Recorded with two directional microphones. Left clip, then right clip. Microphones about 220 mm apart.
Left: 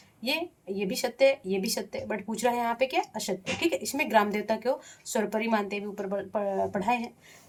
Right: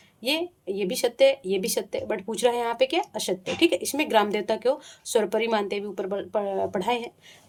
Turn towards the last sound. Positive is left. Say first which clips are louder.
# right 2 dB
turn(degrees=-45)  # may be behind; listen again after turning